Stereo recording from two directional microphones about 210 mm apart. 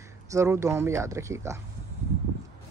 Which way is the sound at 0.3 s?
15° right (ahead or behind).